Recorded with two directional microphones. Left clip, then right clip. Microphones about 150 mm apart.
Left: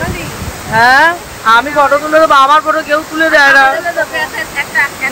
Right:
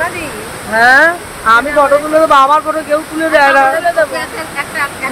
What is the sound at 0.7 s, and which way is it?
Speech, 5° left (ahead or behind).